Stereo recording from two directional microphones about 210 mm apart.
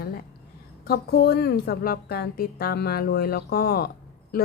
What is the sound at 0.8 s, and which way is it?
Speech, 50° left (ahead or behind).